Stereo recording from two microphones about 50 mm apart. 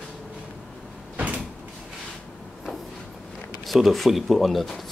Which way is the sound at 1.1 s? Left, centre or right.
Right.